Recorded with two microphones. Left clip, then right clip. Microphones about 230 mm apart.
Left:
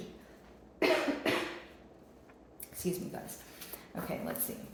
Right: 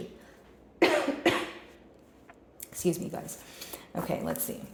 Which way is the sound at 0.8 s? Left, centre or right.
Right.